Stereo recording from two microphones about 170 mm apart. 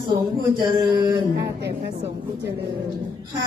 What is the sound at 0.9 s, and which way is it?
Speech, 25° right (ahead or behind).